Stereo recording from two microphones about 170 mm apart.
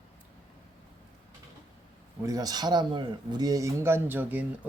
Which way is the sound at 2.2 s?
20° right (ahead or behind).